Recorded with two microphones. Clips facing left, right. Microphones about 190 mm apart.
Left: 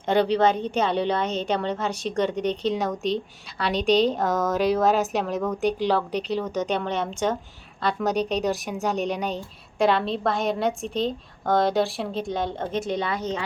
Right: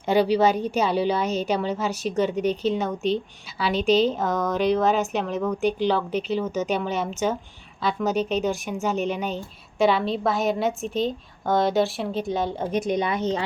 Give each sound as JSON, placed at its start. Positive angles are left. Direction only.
{"t": 0.1, "sound": "a woman's voice", "side_deg": -5}
{"t": 12.7, "sound": "a woman's voice", "side_deg": -15}